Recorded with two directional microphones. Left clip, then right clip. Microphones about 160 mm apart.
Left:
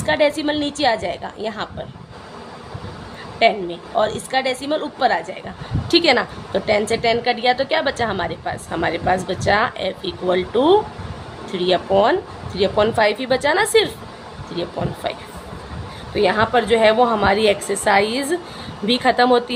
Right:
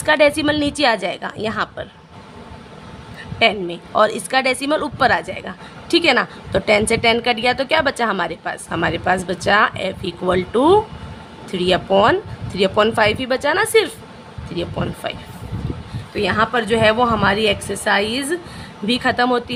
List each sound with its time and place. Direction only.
0.0 s a woman's voice: 50° right (ahead or behind)
3.3 s a woman's voice: 40° right (ahead or behind)
5.9 s a woman's voice: 35° right (ahead or behind)
15.0 s a woman's voice: 35° right (ahead or behind)